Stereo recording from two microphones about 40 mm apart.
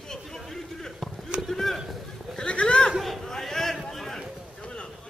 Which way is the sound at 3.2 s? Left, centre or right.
Centre.